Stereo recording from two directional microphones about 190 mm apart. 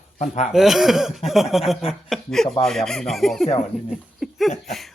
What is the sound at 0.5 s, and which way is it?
Speech, centre (ahead or behind).